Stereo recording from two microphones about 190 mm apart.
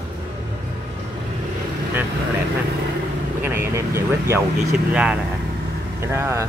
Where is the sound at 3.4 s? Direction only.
10° right (ahead or behind).